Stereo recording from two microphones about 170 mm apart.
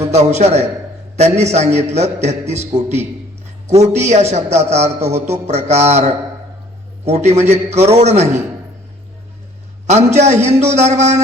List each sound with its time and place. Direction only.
0.0 s a man's voice: 40° right (ahead or behind)
9.8 s a man's voice: 40° right (ahead or behind)